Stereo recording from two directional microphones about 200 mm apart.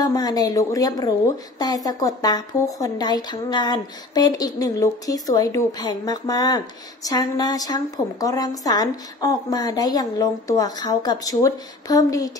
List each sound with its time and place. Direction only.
0.0 s speech: 20° left (ahead or behind)